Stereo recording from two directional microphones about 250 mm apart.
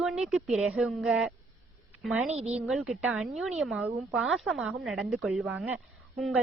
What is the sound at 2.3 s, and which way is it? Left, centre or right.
Speech, right.